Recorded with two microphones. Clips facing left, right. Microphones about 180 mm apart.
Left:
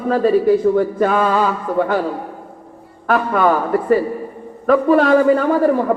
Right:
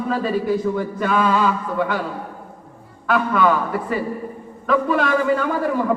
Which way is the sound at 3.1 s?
45° left (ahead or behind).